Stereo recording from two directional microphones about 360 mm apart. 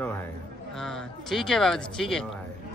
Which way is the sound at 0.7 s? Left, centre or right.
Centre.